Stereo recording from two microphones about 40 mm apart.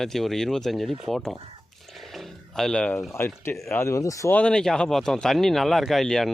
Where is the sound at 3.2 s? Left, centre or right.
Left.